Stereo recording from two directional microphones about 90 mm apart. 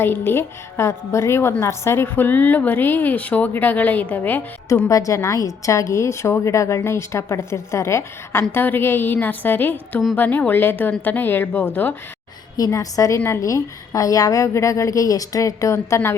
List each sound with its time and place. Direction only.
0.0 s a woman's voice: 25° left (ahead or behind)
4.9 s a woman's voice: 40° left (ahead or behind)
12.5 s a woman's voice: 45° left (ahead or behind)